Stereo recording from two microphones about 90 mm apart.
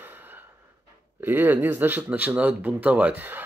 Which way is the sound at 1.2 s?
20° right (ahead or behind).